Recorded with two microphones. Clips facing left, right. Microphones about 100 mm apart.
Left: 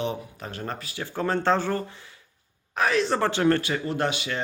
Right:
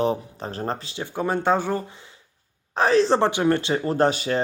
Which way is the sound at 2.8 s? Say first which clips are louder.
Right 5 dB; 35° right (ahead or behind).